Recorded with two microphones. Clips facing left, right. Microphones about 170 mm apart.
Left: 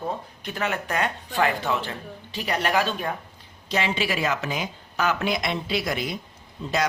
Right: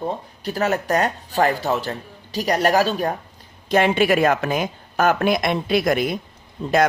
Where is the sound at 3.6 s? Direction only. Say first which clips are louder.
Right 9 dB; 50° right (ahead or behind).